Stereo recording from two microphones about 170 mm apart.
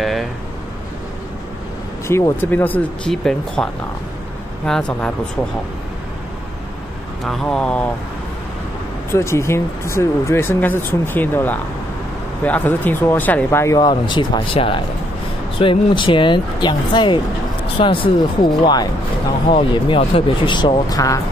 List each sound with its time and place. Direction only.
0.0 s a sound: centre (ahead or behind)
2.0 s speech: 15° left (ahead or behind)
4.6 s speech: 5° left (ahead or behind)
7.2 s speech: 5° left (ahead or behind)
9.1 s speech: 15° left (ahead or behind)